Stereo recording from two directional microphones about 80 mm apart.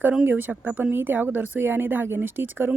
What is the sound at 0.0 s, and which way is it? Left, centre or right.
Speech, centre.